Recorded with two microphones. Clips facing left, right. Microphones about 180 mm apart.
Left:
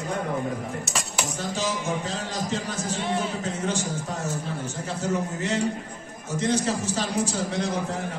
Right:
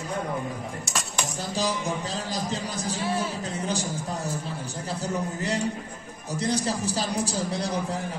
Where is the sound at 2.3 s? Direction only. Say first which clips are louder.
Left 2 dB; 35° right (ahead or behind).